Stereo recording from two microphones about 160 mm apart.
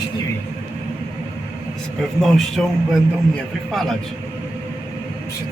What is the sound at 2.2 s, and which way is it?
Speech, centre (ahead or behind).